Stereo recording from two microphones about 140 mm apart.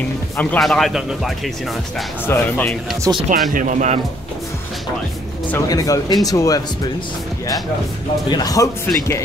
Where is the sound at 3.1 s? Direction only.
25° right (ahead or behind).